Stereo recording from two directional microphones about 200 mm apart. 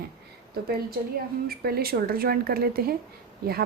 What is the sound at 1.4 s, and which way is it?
A woman's voice, 50° right (ahead or behind).